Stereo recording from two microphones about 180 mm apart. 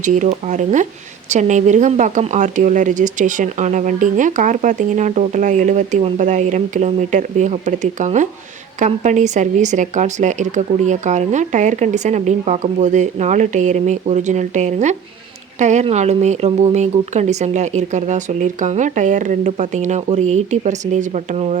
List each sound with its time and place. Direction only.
0.0 s speech: 45° right (ahead or behind)